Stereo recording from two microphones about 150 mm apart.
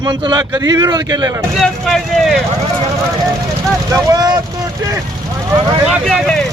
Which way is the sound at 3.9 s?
25° right (ahead or behind).